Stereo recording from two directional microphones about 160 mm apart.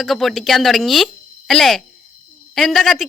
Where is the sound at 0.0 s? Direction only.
Centre (ahead or behind).